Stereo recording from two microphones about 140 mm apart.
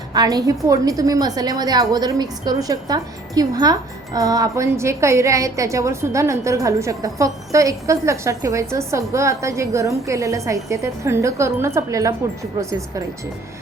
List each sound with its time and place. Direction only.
0.1 s a woman's voice: 25° right (ahead or behind)